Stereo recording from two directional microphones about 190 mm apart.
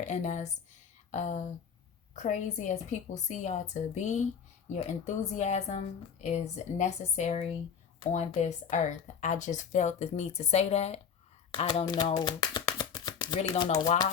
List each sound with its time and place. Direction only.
0.0 s speech: 40° left (ahead or behind)
8.7 s speech: 40° left (ahead or behind)